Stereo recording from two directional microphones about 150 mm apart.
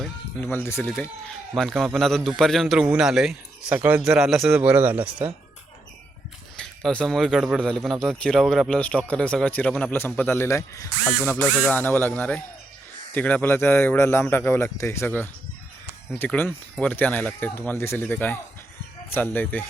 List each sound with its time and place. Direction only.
0.4 s a man's voice: 15° left (ahead or behind); by 5.3 s 15° right (ahead or behind)
6.6 s a man's voice: 5° left (ahead or behind)